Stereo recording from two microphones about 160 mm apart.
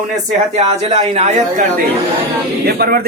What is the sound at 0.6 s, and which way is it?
Speech, 40° right (ahead or behind).